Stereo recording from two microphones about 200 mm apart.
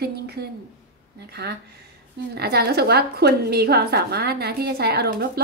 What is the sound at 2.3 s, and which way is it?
A woman's voice, 55° right (ahead or behind).